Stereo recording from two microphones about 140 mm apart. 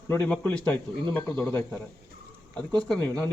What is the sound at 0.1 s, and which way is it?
Speech, 10° left (ahead or behind).